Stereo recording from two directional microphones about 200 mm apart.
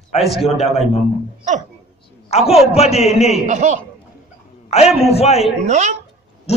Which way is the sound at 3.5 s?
35° right (ahead or behind).